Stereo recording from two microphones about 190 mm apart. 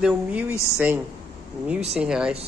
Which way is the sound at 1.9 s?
5° right (ahead or behind).